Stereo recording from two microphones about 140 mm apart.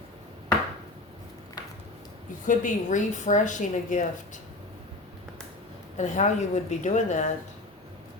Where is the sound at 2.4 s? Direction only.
65° left (ahead or behind).